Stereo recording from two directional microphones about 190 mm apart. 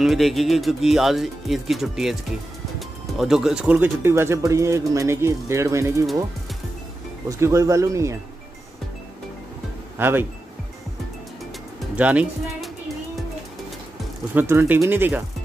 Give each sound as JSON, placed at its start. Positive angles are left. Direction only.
{"t": 0.0, "sound": "speech", "side_deg": 0}
{"t": 3.2, "sound": "speech", "side_deg": 0}
{"t": 7.2, "sound": "speech", "side_deg": -15}
{"t": 9.9, "sound": "speech", "side_deg": -10}
{"t": 12.0, "sound": "music", "side_deg": -5}
{"t": 14.3, "sound": "speech", "side_deg": -10}